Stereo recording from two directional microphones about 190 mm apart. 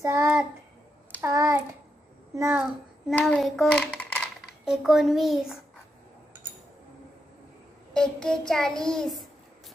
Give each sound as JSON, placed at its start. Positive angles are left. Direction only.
{"t": 0.0, "sound": "child singing", "side_deg": -15}
{"t": 1.2, "sound": "a child's voice", "side_deg": -15}
{"t": 3.2, "sound": "a child's voice", "side_deg": 5}
{"t": 7.9, "sound": "a child's voice", "side_deg": 5}